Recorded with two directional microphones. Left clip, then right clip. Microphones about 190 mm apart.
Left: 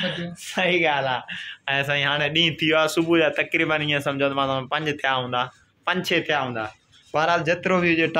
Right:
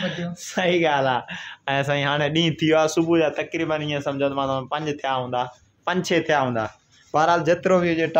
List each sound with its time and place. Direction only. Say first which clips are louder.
0.0 s speech: left 1 dB; 10° right (ahead or behind)
5.9 s a man's voice: right 1 dB; 20° right (ahead or behind)